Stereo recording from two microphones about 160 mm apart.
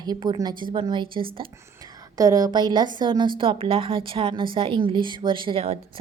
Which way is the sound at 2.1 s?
20° right (ahead or behind).